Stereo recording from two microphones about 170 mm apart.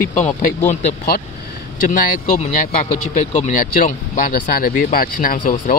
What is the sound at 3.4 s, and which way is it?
Speech, 50° left (ahead or behind).